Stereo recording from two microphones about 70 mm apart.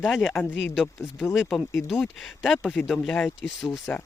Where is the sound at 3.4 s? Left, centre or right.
Centre.